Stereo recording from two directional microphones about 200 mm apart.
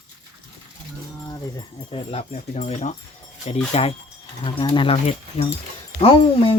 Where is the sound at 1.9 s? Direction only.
30° left (ahead or behind).